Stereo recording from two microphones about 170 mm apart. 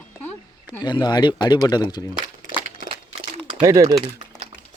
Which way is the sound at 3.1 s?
30° right (ahead or behind).